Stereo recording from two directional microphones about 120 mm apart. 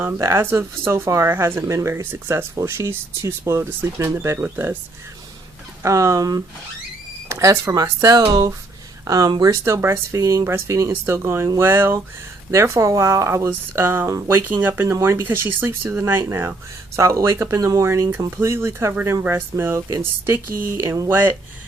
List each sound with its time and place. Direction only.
0.0 s speech: 20° right (ahead or behind)
5.8 s speech: 25° right (ahead or behind)